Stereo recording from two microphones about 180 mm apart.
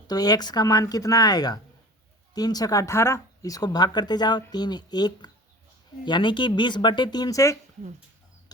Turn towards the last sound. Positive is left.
turn(degrees=20)  # may be behind; listen again after turning